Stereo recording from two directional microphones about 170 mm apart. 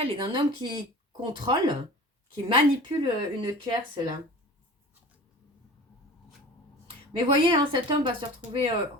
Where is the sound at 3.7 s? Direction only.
25° right (ahead or behind).